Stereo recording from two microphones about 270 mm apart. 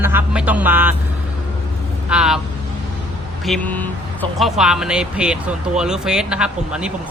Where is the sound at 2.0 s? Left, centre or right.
Centre.